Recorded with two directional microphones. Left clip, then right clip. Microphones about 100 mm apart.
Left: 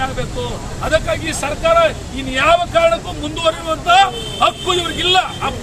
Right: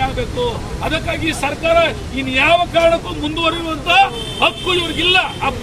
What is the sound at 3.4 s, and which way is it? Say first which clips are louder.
Speech: left 2 dB; 25° left (ahead or behind).